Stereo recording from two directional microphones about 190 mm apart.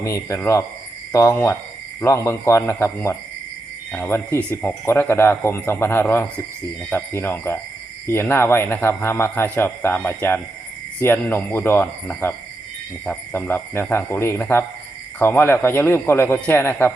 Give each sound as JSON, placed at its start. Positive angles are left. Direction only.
{"t": 0.0, "sound": "a man's voice", "side_deg": 15}